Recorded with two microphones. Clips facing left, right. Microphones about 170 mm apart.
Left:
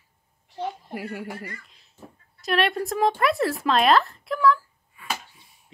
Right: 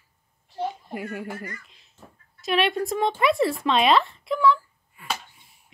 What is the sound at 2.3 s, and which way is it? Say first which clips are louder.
Speech: even; centre (ahead or behind).